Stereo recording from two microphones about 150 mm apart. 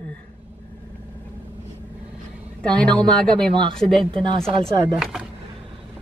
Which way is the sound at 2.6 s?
5° left (ahead or behind).